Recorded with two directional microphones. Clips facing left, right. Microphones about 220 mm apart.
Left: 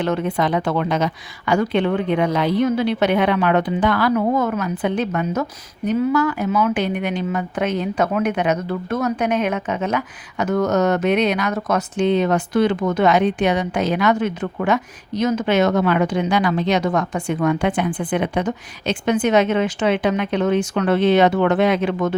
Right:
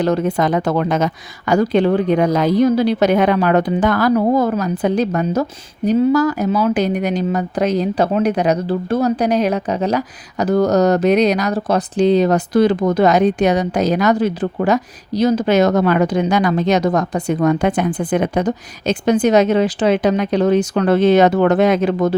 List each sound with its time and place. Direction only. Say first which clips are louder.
0.0 s a woman's voice: right 4 dB; 40° right (ahead or behind)